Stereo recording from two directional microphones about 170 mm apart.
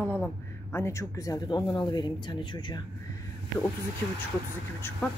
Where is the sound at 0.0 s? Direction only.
10° left (ahead or behind).